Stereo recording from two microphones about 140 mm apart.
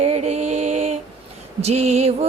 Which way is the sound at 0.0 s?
50° right (ahead or behind).